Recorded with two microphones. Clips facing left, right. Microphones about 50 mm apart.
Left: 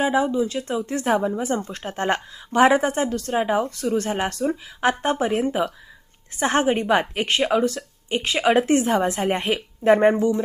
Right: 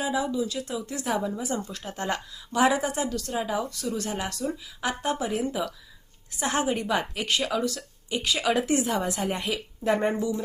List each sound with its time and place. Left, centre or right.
0.0 s a woman's voice: left